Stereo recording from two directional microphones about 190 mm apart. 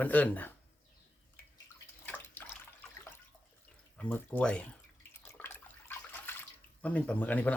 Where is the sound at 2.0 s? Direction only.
10° left (ahead or behind).